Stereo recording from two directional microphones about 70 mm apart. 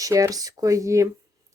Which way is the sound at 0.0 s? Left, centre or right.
Right.